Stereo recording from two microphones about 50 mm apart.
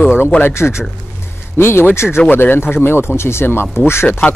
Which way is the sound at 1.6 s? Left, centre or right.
Left.